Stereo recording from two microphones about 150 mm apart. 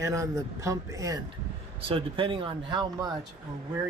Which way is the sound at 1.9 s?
35° right (ahead or behind).